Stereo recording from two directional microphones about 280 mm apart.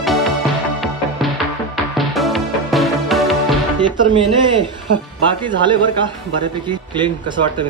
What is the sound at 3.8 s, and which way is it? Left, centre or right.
Speech, centre.